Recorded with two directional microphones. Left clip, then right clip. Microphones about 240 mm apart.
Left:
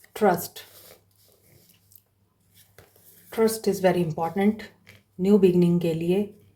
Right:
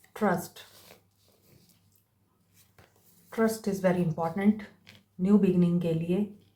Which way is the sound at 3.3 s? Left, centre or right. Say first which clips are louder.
Left 6 dB; left.